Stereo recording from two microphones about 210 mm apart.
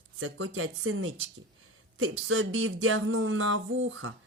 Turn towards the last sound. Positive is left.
turn(degrees=-70)  # may be behind; listen again after turning